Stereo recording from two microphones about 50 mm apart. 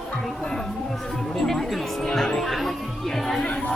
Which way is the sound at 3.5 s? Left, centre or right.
Left.